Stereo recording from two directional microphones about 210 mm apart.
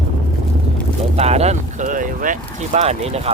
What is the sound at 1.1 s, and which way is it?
Speech, 30° right (ahead or behind).